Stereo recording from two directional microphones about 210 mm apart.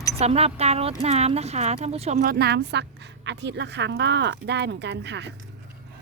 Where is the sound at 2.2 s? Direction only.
50° right (ahead or behind).